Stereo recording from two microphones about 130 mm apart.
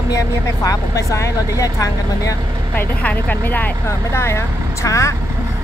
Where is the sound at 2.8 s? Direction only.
15° left (ahead or behind).